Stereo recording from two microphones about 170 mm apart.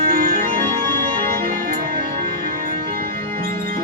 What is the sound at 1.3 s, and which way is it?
Music, 55° right (ahead or behind).